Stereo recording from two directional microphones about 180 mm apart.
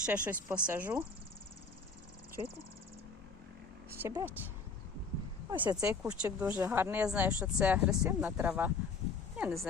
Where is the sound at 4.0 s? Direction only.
15° right (ahead or behind).